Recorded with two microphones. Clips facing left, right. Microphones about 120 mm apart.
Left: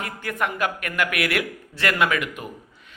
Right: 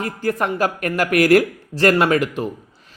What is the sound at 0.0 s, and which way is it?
Speech, 35° right (ahead or behind).